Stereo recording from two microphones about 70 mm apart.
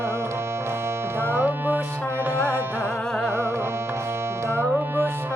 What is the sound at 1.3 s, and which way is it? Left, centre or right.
Music, right.